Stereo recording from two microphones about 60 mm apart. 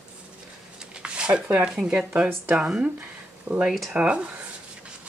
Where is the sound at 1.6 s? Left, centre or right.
Centre.